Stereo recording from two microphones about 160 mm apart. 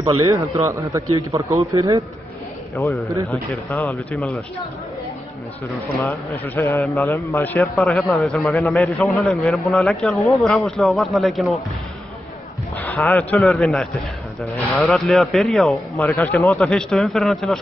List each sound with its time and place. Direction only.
0.0 s a man's voice: 20° right (ahead or behind)
3.7 s a man's voice: 20° left (ahead or behind)
4.1 s a man's voice: centre (ahead or behind)
6.0 s a man's voice: 10° left (ahead or behind)
7.6 s a man's voice: centre (ahead or behind)
12.7 s a man's voice: 10° left (ahead or behind)